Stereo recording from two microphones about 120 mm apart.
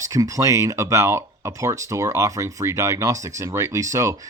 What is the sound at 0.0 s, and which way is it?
Speech, 25° right (ahead or behind).